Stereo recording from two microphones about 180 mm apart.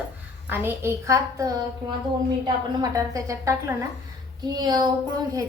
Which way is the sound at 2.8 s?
20° right (ahead or behind).